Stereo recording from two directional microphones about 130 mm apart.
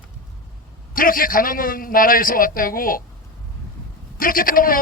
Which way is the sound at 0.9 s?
90° left.